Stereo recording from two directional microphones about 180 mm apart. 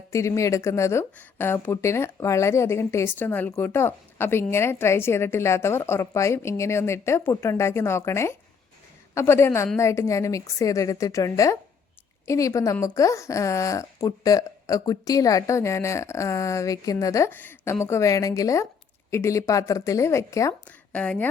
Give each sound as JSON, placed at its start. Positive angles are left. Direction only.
{"t": 0.1, "sound": "a woman's voice", "side_deg": 15}